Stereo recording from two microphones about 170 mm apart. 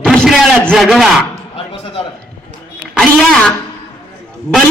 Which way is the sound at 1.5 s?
30° left (ahead or behind).